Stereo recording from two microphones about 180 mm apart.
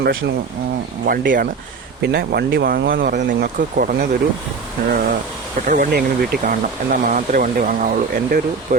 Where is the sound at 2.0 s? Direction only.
65° right (ahead or behind).